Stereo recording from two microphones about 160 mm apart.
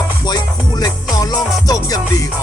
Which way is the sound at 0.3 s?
25° left (ahead or behind).